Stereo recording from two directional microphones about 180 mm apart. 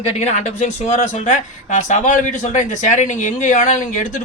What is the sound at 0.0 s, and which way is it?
Speech, 35° left (ahead or behind).